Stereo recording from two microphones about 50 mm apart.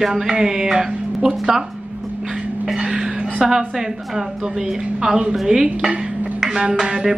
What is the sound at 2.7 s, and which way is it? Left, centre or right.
A woman's voice, centre.